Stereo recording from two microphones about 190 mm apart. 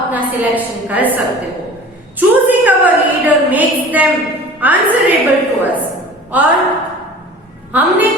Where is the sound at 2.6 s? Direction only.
10° right (ahead or behind).